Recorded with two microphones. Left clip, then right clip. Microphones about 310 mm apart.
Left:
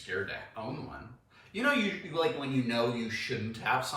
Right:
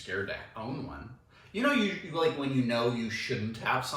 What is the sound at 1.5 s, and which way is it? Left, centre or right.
Speech, centre.